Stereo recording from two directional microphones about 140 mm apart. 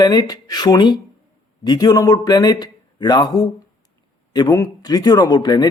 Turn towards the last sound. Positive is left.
turn(degrees=30)  # may be behind; listen again after turning